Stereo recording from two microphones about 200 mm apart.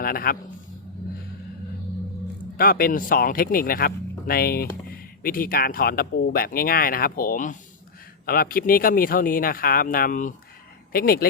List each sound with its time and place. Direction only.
0.0 s speech: 45° left (ahead or behind)
2.6 s speech: 45° left (ahead or behind)